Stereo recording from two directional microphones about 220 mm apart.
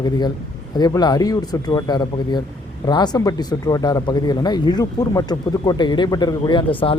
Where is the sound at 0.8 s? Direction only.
20° left (ahead or behind).